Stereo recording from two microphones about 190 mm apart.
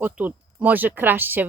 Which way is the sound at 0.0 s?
10° right (ahead or behind).